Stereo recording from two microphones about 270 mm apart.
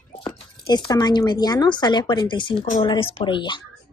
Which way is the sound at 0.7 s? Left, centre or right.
Centre.